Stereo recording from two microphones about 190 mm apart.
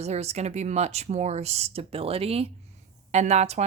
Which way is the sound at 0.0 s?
35° right (ahead or behind).